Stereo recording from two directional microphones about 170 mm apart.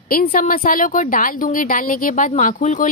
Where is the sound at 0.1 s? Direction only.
55° left (ahead or behind).